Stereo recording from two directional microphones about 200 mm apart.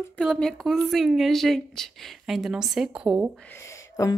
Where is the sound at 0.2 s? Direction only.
5° left (ahead or behind).